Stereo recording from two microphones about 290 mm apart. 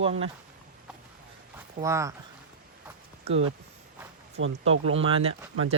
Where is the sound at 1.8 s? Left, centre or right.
Centre.